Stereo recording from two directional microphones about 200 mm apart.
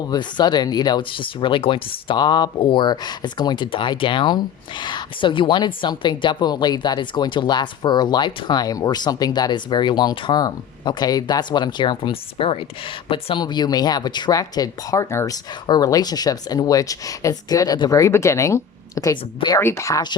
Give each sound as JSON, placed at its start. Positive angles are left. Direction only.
{"t": 0.1, "sound": "speech", "side_deg": 20}